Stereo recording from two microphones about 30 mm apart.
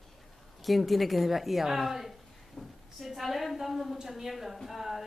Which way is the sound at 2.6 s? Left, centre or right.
Left.